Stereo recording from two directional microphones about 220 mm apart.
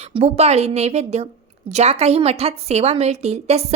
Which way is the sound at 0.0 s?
30° right (ahead or behind).